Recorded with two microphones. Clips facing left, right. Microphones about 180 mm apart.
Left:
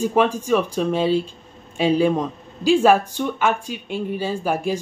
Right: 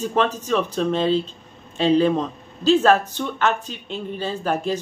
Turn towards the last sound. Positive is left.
turn(degrees=10)  # may be behind; listen again after turning